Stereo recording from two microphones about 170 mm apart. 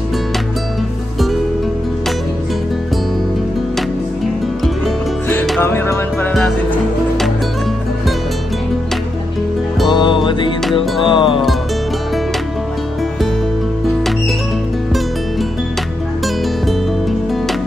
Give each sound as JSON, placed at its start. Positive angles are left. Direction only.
{"t": 5.6, "sound": "music", "side_deg": 15}
{"t": 6.3, "sound": "music", "side_deg": 0}
{"t": 9.8, "sound": "music", "side_deg": 25}